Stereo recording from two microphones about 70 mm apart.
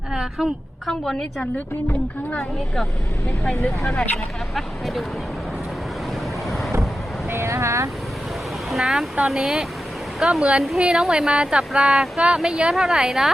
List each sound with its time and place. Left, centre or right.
0.1 s a sound: centre
0.9 s a woman's voice: centre
3.4 s speech: centre
6.5 s vehicle: centre
7.3 s speech: right
8.7 s a woman's voice: centre